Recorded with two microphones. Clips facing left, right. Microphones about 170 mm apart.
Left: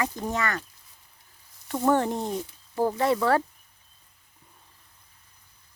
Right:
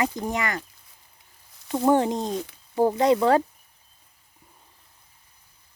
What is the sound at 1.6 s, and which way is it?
Speech, 15° right (ahead or behind).